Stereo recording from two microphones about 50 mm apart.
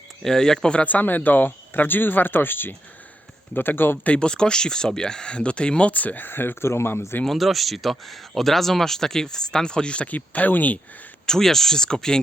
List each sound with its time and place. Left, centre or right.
0.2 s speech: centre
0.9 s a man's voice: left
4.0 s speech: left
7.3 s speech: centre; by 10.1 s left
10.1 s speech: left
11.3 s speech: centre